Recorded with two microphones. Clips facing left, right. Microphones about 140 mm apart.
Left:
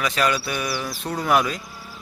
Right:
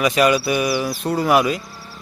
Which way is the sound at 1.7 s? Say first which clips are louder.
Right 1 dB; 15° left (ahead or behind).